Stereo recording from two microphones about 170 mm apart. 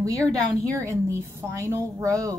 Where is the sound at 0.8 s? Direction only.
15° right (ahead or behind).